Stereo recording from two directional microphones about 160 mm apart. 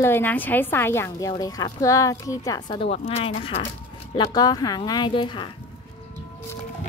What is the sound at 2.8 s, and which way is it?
A woman's voice, 40° left (ahead or behind).